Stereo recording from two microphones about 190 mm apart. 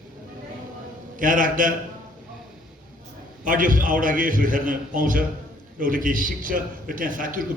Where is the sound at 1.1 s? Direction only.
45° right (ahead or behind).